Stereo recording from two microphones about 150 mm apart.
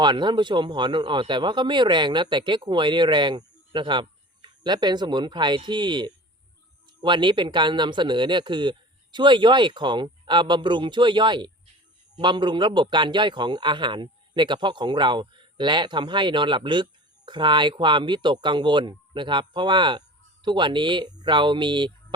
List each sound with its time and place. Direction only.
0.0 s a man's voice: 30° right (ahead or behind)